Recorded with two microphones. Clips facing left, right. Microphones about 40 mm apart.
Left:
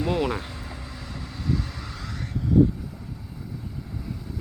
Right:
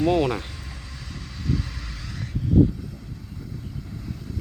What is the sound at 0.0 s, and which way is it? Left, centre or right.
Speech, centre.